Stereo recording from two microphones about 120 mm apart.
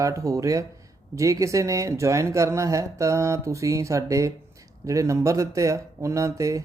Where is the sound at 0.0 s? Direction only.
25° right (ahead or behind).